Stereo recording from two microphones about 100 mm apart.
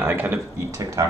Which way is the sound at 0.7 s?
30° right (ahead or behind).